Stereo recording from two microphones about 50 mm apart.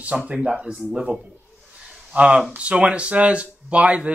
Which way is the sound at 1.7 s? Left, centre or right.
Centre.